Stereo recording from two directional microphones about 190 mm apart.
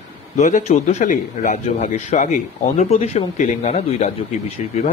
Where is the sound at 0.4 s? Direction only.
40° left (ahead or behind).